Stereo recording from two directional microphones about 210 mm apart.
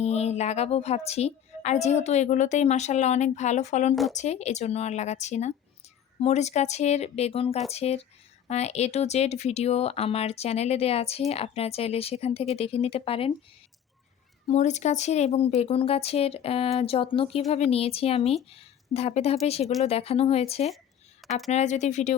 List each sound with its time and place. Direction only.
0.0 s a woman's voice: 30° left (ahead or behind)
14.4 s a woman's voice: 35° left (ahead or behind)